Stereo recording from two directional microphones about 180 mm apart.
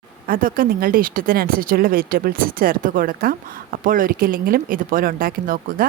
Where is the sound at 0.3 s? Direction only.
50° right (ahead or behind).